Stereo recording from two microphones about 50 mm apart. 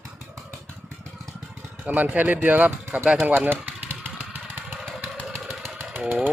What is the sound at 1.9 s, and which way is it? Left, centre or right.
Speech, right.